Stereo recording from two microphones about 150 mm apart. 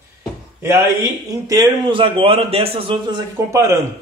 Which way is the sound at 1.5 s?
30° right (ahead or behind).